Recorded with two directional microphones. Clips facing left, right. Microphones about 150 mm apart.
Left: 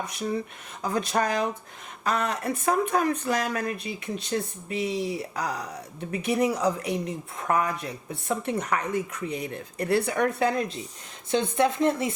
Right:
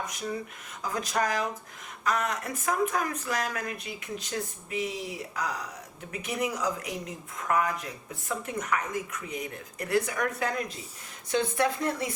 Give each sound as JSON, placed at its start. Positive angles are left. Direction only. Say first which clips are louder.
{"t": 0.0, "sound": "speech", "louder": "left 4 dB", "side_deg": 30}